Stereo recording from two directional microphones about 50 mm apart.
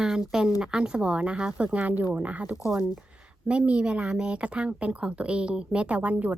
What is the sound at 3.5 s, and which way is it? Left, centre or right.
A woman's voice, right.